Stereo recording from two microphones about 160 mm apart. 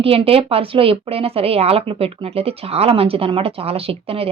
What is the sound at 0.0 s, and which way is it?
Speech, 35° right (ahead or behind).